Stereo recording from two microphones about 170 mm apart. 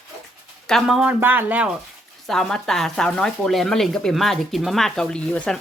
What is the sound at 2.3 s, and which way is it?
Speech, centre (ahead or behind).